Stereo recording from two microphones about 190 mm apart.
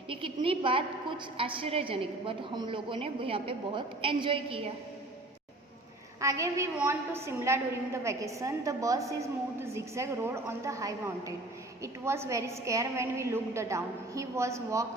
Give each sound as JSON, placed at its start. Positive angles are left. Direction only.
{"t": 0.1, "sound": "a woman's voice", "side_deg": -30}
{"t": 6.1, "sound": "a woman's voice", "side_deg": -15}